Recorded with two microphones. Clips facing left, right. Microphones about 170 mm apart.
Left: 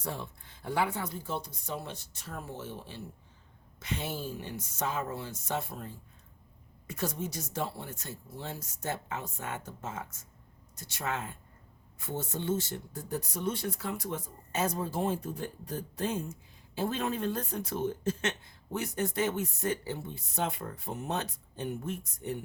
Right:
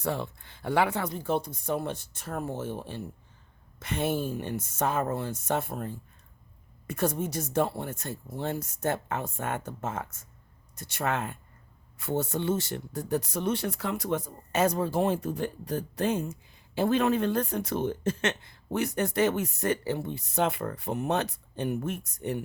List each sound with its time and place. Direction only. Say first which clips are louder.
0.0 s speech: right 7 dB; 70° right (ahead or behind)